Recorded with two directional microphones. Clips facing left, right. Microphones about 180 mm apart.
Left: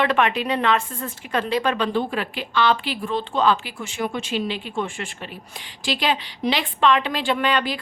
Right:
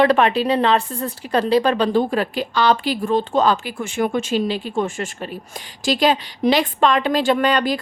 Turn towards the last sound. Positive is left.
turn(degrees=-40)  # may be behind; listen again after turning